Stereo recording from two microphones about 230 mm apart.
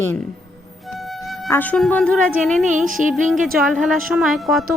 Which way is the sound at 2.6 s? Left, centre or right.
Right.